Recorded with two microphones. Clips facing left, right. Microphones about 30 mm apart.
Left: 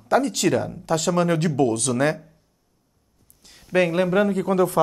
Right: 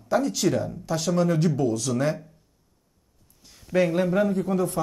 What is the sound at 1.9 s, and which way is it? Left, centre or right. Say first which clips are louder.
Speech: left 3 dB; left.